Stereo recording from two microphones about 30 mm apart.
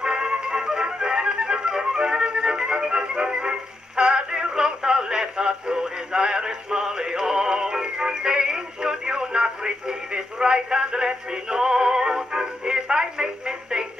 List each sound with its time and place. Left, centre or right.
0.0 s music: right
0.8 s flute: right